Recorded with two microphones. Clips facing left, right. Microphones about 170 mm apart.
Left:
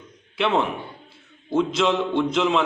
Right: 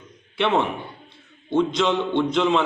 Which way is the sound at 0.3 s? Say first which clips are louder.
Right 1 dB; centre (ahead or behind).